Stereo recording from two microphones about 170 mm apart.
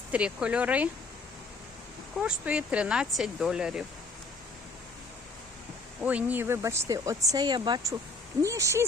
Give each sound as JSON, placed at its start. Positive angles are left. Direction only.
{"t": 0.1, "sound": "speech", "side_deg": -5}
{"t": 2.1, "sound": "speech", "side_deg": -5}
{"t": 6.0, "sound": "speech", "side_deg": -10}